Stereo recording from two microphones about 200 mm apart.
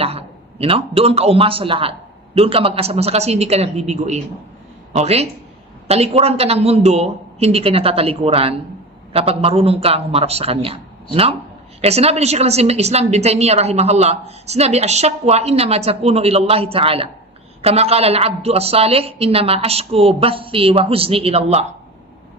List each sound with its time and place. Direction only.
0.0 s a woman's voice: 30° right (ahead or behind)